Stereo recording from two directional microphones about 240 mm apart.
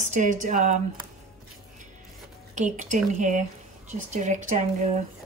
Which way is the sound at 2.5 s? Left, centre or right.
Right.